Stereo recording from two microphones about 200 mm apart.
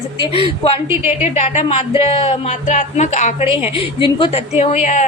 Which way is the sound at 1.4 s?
30° left (ahead or behind).